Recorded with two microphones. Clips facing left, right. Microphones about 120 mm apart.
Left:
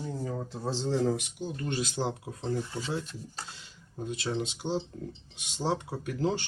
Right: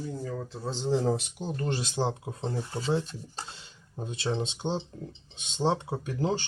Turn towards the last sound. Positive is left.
turn(degrees=-25)  # may be behind; listen again after turning